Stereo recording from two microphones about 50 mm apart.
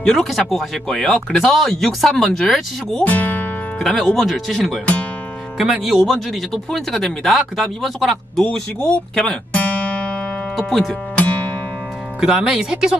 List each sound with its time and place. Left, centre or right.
0.0 s speech: centre
3.1 s speech: left
3.8 s speech: centre
5.6 s speech: centre
6.0 s speech: centre
9.5 s guitar: left
10.6 s speech: centre
11.1 s music: left
12.2 s speech: centre